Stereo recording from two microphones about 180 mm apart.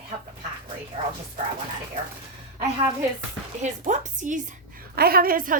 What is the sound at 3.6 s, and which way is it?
A woman's voice, 45° right (ahead or behind).